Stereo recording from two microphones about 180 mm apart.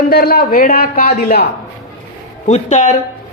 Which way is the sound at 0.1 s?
60° left (ahead or behind).